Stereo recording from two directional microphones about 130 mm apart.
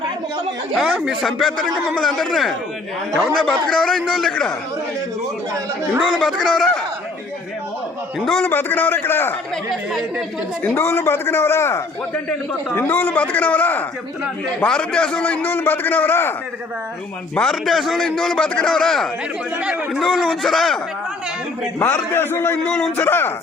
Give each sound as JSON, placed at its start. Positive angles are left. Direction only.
{"t": 0.8, "sound": "a man's voice", "side_deg": 0}
{"t": 6.0, "sound": "a man's voice", "side_deg": 0}
{"t": 8.2, "sound": "a man's voice", "side_deg": 5}
{"t": 8.4, "sound": "a man's voice", "side_deg": 15}
{"t": 9.6, "sound": "a man's voice", "side_deg": 0}
{"t": 10.6, "sound": "a man's voice", "side_deg": 15}
{"t": 17.3, "sound": "a man's voice", "side_deg": 5}
{"t": 19.5, "sound": "a man's voice", "side_deg": -10}
{"t": 22.1, "sound": "a man's voice", "side_deg": 15}
{"t": 22.7, "sound": "a man's voice", "side_deg": 5}
{"t": 23.0, "sound": "a man's voice", "side_deg": 15}